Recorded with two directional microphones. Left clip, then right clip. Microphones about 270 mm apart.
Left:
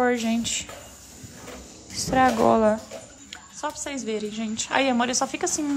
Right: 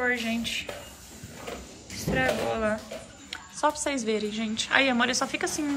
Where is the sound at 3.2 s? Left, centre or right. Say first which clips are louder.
Right 6 dB; centre.